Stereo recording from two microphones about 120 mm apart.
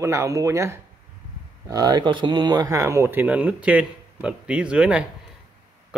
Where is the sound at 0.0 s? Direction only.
25° right (ahead or behind).